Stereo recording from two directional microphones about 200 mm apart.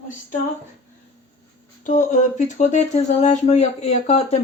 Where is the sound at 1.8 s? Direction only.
40° left (ahead or behind).